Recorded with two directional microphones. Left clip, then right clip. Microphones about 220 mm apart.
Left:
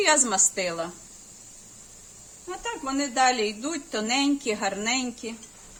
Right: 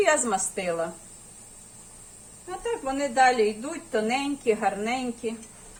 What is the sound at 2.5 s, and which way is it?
Speech, 55° left (ahead or behind).